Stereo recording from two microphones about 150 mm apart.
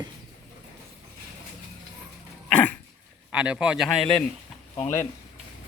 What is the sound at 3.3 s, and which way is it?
Speech, 5° right (ahead or behind).